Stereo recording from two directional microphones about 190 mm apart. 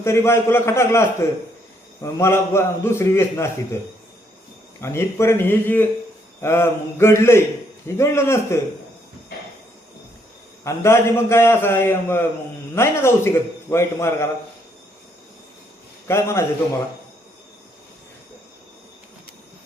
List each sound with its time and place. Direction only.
0.0 s a man's voice: 15° left (ahead or behind)
4.8 s a man's voice: 15° left (ahead or behind)
10.6 s a man's voice: 15° left (ahead or behind)
16.0 s a man's voice: 15° left (ahead or behind)